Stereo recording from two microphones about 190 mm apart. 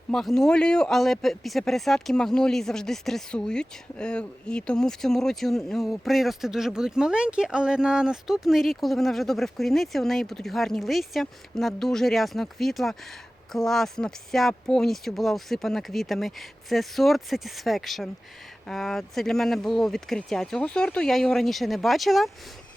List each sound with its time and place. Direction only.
0.1 s speech: centre (ahead or behind)